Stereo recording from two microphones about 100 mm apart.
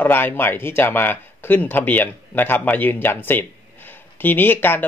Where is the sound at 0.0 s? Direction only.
20° left (ahead or behind).